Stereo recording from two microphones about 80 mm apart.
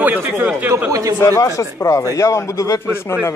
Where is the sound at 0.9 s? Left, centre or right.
Right.